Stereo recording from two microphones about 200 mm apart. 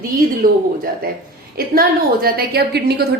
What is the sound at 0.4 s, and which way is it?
A woman's voice, 45° right (ahead or behind).